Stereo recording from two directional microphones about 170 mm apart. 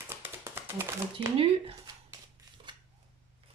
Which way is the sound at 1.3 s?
35° right (ahead or behind).